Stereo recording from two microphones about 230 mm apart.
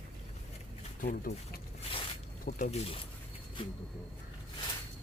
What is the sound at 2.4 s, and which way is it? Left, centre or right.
Speech, left.